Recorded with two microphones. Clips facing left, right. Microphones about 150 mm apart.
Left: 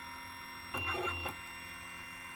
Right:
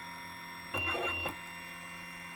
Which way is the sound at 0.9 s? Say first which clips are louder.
Right 2 dB; 90° right.